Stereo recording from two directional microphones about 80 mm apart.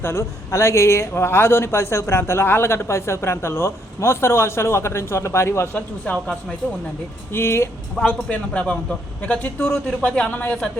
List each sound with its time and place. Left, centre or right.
0.0 s speech: left
5.7 s speech: centre
7.3 s speech: left
7.9 s speech: centre